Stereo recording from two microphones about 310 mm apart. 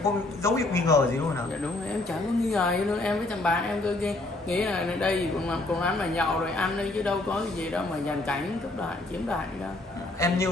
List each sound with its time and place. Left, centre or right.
0.0 s a man's voice: centre
2.5 s a man's voice: centre
10.2 s a man's voice: centre